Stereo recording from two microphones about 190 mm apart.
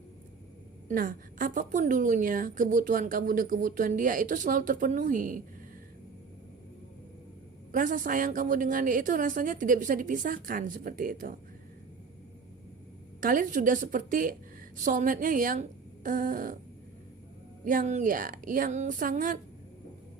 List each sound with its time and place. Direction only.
0.9 s a woman's voice: 45° right (ahead or behind)
7.7 s a woman's voice: 45° right (ahead or behind)
13.1 s a woman's voice: 45° right (ahead or behind)
17.7 s a woman's voice: 40° right (ahead or behind)